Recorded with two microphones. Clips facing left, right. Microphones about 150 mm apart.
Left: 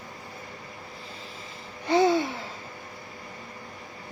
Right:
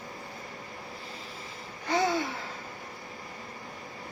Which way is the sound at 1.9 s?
25° left (ahead or behind).